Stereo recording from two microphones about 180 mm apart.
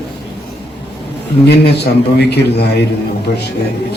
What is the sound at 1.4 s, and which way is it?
A man's voice, 65° left (ahead or behind).